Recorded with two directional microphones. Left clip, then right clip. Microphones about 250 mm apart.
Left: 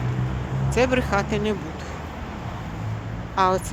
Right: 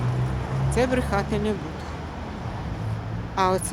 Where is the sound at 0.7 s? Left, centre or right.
Centre.